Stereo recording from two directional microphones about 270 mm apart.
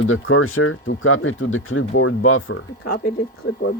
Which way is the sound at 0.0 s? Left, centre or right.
Left.